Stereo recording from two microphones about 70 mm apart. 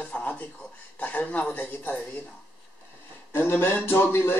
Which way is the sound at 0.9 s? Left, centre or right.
Left.